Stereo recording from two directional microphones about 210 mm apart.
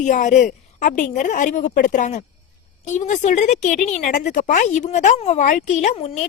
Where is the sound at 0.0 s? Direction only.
35° left (ahead or behind).